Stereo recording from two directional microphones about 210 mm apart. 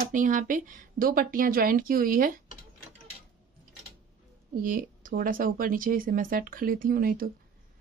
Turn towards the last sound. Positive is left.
turn(degrees=-45)  # may be behind; listen again after turning